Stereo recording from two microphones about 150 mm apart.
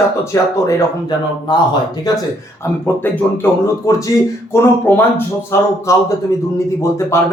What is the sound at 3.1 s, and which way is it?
Speech, 15° left (ahead or behind).